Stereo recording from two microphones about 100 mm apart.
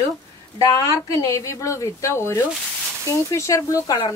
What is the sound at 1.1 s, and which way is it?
A woman's voice, 35° left (ahead or behind).